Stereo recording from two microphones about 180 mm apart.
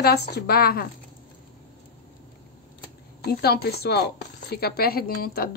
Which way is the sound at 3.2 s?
60° left (ahead or behind).